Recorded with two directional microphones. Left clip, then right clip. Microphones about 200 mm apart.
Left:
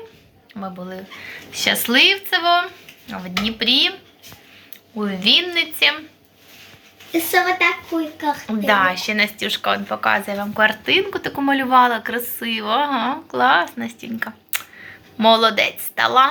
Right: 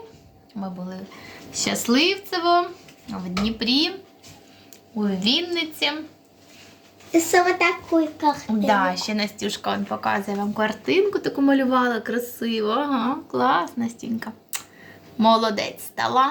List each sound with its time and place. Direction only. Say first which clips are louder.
0.6 s speech: left 3 dB; 15° left (ahead or behind)
1.5 s speech: left 6 dB; 5° right (ahead or behind)
4.9 s speech: left 6 dB; centre (ahead or behind)
7.1 s speech: left 1 dB; 10° right (ahead or behind)